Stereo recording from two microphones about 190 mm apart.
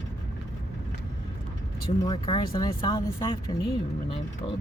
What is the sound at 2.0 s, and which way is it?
A woman's voice, 25° left (ahead or behind).